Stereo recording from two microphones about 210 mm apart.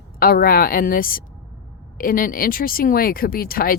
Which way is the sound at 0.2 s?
45° left (ahead or behind).